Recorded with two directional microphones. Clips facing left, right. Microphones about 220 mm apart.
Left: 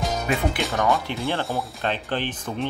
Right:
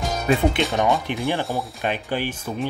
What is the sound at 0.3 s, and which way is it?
Speech, 35° right (ahead or behind).